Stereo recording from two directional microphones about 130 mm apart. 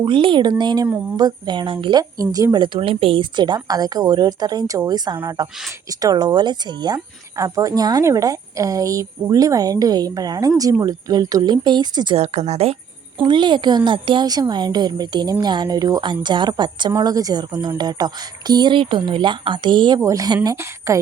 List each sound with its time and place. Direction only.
0.0 s speech: 40° right (ahead or behind)
12.1 s speech: 55° right (ahead or behind)
13.2 s speech: 35° right (ahead or behind)
20.0 s speech: 25° right (ahead or behind)